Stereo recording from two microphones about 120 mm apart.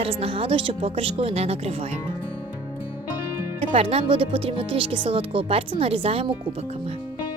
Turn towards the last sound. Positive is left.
turn(degrees=-55)  # may be behind; listen again after turning